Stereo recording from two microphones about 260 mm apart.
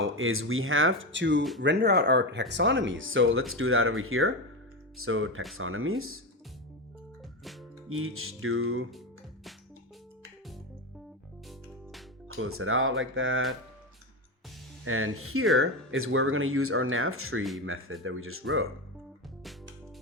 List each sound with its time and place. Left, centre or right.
0.0 s speech: right
7.9 s speech: right
11.4 s music: centre
12.4 s speech: right
14.8 s speech: right